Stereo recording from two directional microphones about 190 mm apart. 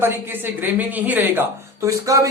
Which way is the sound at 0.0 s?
10° right (ahead or behind).